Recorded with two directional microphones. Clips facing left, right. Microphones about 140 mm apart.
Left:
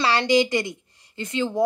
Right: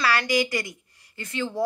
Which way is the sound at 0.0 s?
25° left (ahead or behind).